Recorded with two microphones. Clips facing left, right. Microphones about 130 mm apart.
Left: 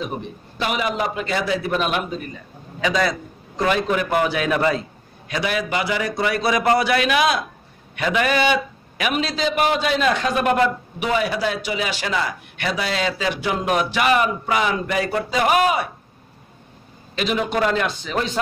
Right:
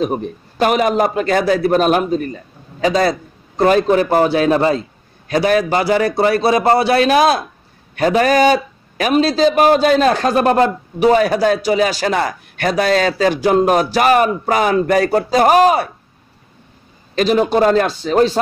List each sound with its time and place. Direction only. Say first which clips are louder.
0.0 s a man's voice: right 9 dB; 45° right (ahead or behind)
17.1 s a man's voice: right 8 dB; 40° right (ahead or behind)